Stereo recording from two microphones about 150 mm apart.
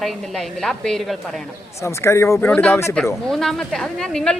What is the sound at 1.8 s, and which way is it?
A woman's voice, 20° left (ahead or behind).